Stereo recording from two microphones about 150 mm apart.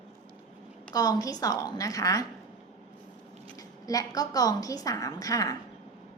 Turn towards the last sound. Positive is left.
turn(degrees=25)  # may be behind; listen again after turning